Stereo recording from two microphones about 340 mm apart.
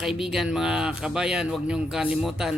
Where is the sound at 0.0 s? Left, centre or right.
Centre.